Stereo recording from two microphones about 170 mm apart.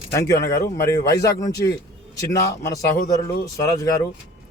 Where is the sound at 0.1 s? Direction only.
15° left (ahead or behind).